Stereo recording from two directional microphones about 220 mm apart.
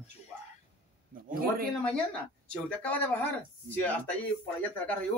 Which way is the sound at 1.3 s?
40° right (ahead or behind).